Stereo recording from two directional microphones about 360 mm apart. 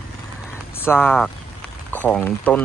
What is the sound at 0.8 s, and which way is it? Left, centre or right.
Speech, centre.